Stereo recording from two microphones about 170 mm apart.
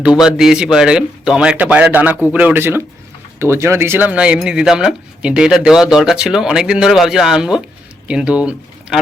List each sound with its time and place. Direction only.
0.0 s speech: 5° right (ahead or behind)